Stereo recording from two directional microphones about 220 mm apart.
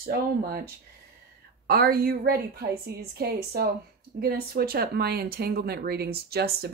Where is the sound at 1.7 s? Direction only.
45° right (ahead or behind).